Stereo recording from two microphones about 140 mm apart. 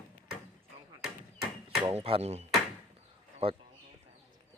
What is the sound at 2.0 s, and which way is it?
Speech, 45° right (ahead or behind).